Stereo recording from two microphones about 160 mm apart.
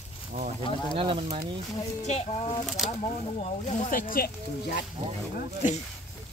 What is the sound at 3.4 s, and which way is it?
Speech, 50° left (ahead or behind).